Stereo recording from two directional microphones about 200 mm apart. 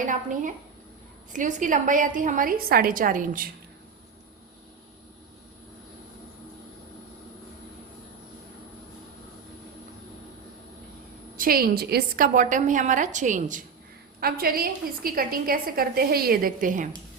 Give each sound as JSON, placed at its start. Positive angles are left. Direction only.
{"t": 0.0, "sound": "a woman's voice", "side_deg": -40}
{"t": 11.3, "sound": "a woman's voice", "side_deg": -45}